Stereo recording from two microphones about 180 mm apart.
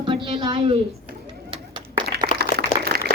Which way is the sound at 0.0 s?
25° right (ahead or behind).